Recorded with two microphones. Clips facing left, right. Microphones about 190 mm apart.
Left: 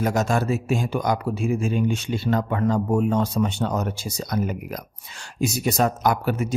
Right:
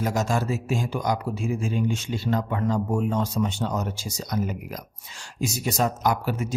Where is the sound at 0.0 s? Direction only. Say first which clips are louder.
Left 3 dB; 60° left (ahead or behind).